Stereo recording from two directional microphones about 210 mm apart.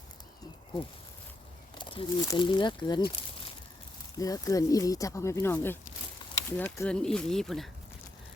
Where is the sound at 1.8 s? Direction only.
25° left (ahead or behind).